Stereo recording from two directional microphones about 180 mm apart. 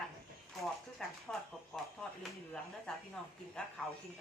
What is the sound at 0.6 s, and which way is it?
Typewriter, centre (ahead or behind).